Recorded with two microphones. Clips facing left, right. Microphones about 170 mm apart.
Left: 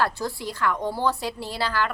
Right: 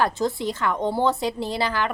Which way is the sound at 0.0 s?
20° right (ahead or behind).